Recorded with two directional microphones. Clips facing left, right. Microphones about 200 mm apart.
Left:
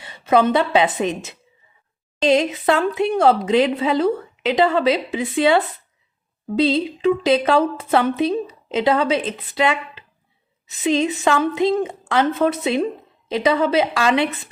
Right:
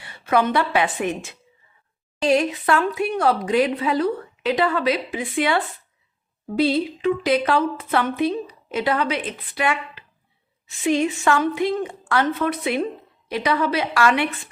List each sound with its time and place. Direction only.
0.0 s a woman's voice: 20° left (ahead or behind)